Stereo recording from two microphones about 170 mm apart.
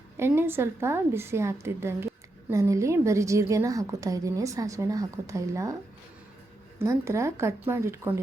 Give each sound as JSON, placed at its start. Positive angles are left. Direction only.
{"t": 0.2, "sound": "a woman's voice", "side_deg": -15}
{"t": 6.7, "sound": "a woman's voice", "side_deg": -15}